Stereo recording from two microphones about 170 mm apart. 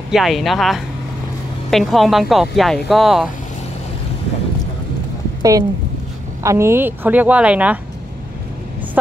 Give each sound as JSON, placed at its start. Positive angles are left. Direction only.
{"t": 0.1, "sound": "speech", "side_deg": 0}
{"t": 5.4, "sound": "a woman's voice", "side_deg": -20}